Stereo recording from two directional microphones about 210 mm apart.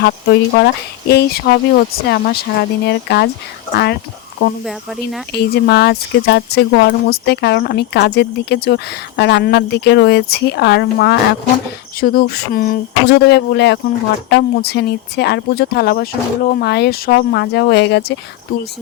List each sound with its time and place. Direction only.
0.0 s speech: 50° left (ahead or behind)
4.6 s speech: centre (ahead or behind)
5.3 s speech: 50° left (ahead or behind)